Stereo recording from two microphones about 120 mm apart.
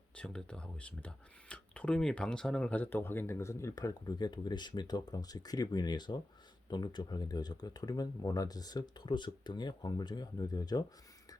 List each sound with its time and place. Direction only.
0.2 s speech: 5° left (ahead or behind); by 10.8 s 35° left (ahead or behind)